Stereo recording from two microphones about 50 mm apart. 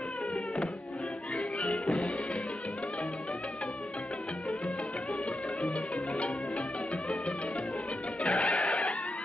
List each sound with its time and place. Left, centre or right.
1.9 s music: centre
5.7 s music: left
8.2 s music: left